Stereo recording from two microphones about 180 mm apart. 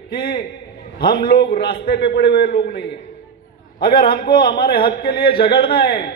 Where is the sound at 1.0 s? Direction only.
55° left (ahead or behind).